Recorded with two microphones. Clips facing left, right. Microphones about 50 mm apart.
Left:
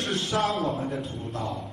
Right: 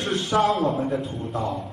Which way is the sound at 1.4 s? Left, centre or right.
Right.